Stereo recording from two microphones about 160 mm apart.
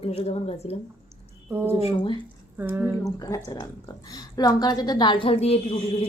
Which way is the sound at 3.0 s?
20° left (ahead or behind).